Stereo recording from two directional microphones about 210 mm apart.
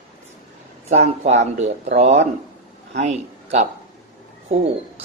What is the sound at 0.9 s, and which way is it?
A man's voice, 30° right (ahead or behind).